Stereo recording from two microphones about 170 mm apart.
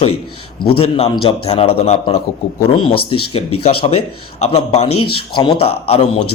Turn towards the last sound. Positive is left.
turn(degrees=35)  # may be behind; listen again after turning